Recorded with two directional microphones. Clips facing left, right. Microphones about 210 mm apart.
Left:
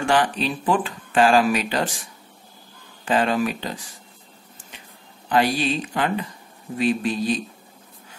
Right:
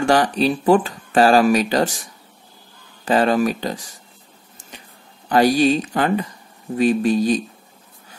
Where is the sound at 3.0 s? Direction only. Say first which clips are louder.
Right 4 dB; 40° right (ahead or behind).